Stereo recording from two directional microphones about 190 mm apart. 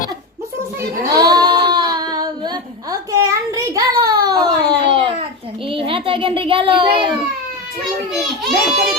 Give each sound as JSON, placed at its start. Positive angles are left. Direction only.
{"t": 1.0, "sound": "a sound", "side_deg": -20}
{"t": 5.6, "sound": "a child's voice", "side_deg": -30}
{"t": 8.1, "sound": "a child's voice", "side_deg": 0}